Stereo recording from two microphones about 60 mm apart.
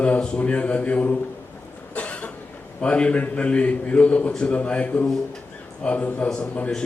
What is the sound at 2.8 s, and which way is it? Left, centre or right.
A man's voice, centre.